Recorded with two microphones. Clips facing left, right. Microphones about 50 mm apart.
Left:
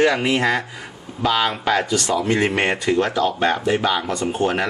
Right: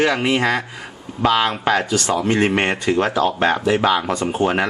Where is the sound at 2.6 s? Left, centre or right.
Centre.